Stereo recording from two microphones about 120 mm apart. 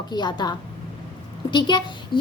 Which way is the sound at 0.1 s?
40° left (ahead or behind).